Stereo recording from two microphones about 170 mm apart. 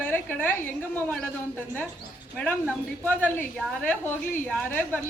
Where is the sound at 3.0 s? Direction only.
10° left (ahead or behind).